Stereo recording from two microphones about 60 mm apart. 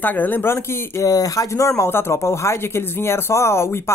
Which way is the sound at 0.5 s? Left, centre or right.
Left.